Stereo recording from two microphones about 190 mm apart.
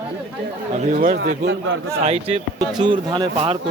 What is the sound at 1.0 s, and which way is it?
Speech, 50° right (ahead or behind).